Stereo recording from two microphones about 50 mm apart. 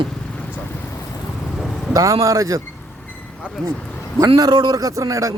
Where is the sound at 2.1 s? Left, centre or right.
Right.